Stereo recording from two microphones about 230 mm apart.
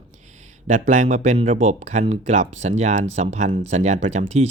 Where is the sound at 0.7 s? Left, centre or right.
Right.